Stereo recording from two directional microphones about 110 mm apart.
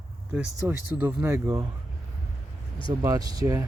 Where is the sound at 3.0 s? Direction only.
35° right (ahead or behind).